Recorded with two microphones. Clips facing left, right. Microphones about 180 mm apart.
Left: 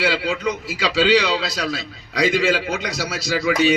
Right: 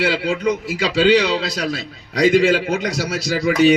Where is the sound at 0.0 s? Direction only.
50° right (ahead or behind).